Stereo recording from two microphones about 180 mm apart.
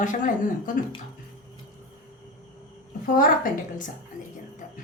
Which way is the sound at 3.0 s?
50° left (ahead or behind).